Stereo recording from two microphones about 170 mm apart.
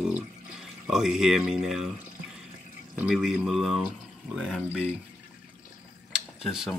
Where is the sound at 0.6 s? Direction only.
5° right (ahead or behind).